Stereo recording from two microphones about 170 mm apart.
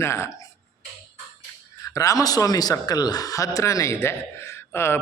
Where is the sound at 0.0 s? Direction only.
15° left (ahead or behind).